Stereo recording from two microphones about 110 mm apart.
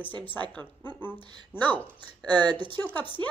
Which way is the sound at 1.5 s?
20° left (ahead or behind).